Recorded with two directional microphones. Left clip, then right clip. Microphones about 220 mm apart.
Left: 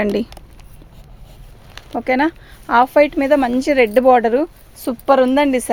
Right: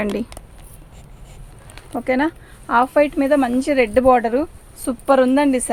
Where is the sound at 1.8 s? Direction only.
35° left (ahead or behind).